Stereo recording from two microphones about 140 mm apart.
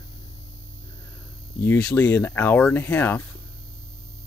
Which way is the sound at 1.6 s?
10° left (ahead or behind).